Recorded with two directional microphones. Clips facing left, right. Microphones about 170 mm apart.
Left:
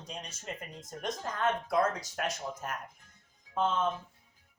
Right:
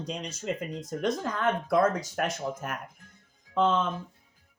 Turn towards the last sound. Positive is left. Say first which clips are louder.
# right 5 dB
turn(degrees=-70)  # may be behind; listen again after turning